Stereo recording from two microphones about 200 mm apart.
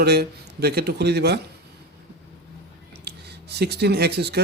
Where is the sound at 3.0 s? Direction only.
55° right (ahead or behind).